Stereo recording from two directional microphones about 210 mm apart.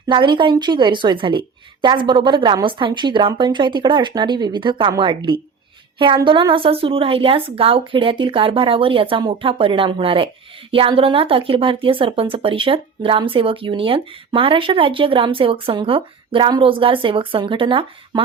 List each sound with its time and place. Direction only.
0.1 s speech: 20° right (ahead or behind)